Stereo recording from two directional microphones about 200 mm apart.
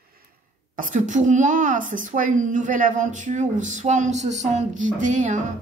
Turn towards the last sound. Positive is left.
turn(degrees=-40)  # may be behind; listen again after turning